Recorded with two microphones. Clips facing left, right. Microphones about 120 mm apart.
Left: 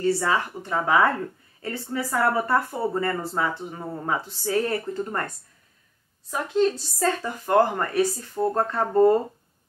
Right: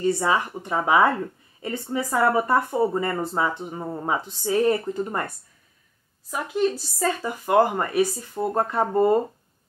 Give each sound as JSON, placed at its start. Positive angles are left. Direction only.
{"t": 0.0, "sound": "speech", "side_deg": -15}
{"t": 6.3, "sound": "speech", "side_deg": -10}